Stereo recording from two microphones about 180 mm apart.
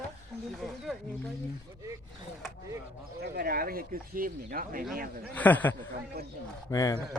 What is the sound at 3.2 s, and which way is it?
Speech, 60° right (ahead or behind).